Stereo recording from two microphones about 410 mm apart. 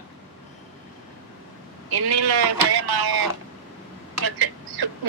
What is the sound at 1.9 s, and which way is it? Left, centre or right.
Speech, right.